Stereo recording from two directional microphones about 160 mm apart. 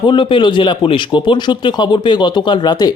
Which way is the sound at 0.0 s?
30° left (ahead or behind).